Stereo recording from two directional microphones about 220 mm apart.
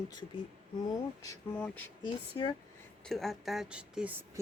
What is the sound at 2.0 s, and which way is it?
Speech, 20° left (ahead or behind).